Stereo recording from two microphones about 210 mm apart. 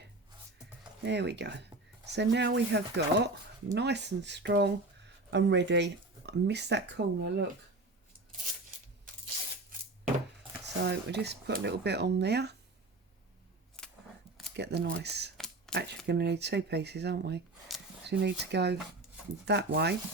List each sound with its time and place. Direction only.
1.0 s speech: 55° right (ahead or behind)
10.8 s speech: 55° right (ahead or behind)
13.8 s a sound: 5° left (ahead or behind)
14.5 s speech: 55° right (ahead or behind)